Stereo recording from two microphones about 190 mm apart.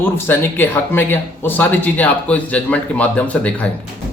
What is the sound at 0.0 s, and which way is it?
Speech, 10° left (ahead or behind).